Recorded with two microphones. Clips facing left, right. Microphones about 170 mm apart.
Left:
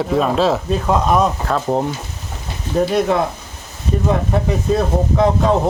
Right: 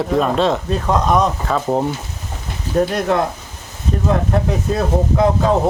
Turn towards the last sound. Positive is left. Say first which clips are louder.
# even
turn(degrees=0)  # may be behind; listen again after turning